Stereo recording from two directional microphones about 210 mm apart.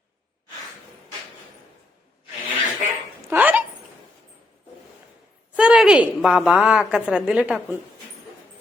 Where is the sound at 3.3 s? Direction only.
10° right (ahead or behind).